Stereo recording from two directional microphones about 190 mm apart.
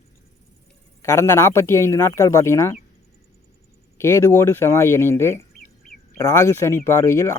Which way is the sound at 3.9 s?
15° left (ahead or behind).